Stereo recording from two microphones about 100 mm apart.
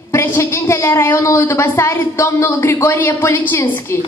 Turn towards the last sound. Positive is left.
turn(degrees=25)  # may be behind; listen again after turning